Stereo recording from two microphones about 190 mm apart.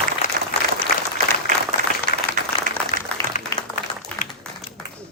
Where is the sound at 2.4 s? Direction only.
45° right (ahead or behind).